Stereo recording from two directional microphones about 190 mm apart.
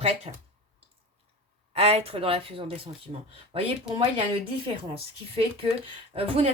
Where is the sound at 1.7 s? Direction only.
30° right (ahead or behind).